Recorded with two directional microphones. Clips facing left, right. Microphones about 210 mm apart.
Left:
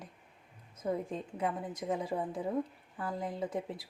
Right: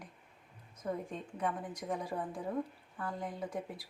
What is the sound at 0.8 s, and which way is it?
Speech, 25° left (ahead or behind).